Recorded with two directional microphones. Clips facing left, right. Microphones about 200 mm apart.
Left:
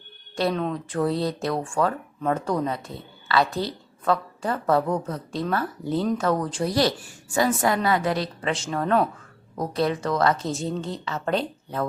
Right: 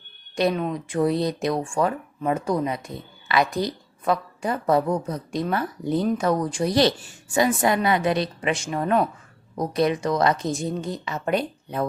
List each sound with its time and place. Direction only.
0.3 s speech: 10° right (ahead or behind)